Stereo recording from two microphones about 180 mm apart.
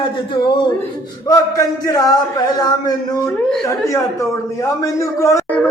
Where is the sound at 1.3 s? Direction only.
20° left (ahead or behind).